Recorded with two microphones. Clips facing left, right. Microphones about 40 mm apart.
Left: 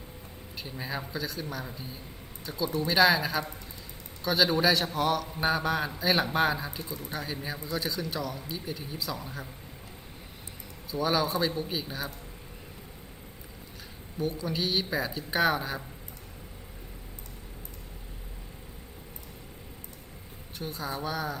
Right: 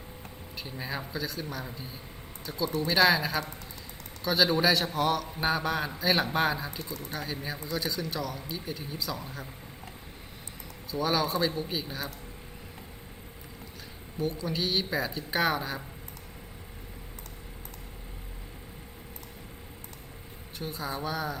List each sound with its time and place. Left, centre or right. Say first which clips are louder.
0.5 s speech: even; centre
2.6 s speech: even; centre
2.9 s speech: left 1 dB; centre
7.4 s speech: right 1 dB; centre
10.9 s speech: even; centre
14.2 s speech: even; centre
20.6 s speech: even; centre